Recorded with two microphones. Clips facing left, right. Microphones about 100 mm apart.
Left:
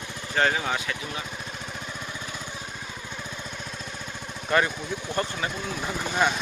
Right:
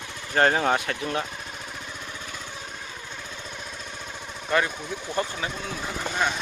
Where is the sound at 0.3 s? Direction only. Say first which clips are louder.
Right 4 dB; 45° right (ahead or behind).